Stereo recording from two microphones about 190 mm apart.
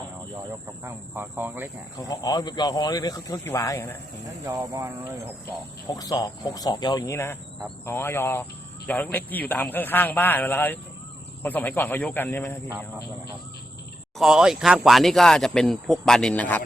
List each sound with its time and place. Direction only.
0.9 s speech: 10° right (ahead or behind)
2.0 s speech: 20° left (ahead or behind)
4.4 s speech: 15° right (ahead or behind)
5.9 s a man's voice: 20° left (ahead or behind)
14.2 s speech: 5° right (ahead or behind)